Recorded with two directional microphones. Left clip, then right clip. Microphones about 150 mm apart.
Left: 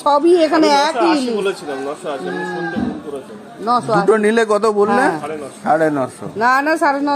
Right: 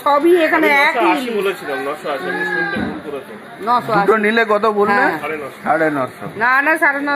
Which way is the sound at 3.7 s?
75° left (ahead or behind).